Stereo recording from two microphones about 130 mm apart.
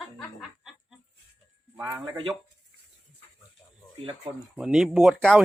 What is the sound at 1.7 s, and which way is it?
Speech, 20° right (ahead or behind).